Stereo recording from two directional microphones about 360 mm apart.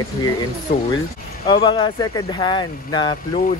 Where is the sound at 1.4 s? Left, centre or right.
Centre.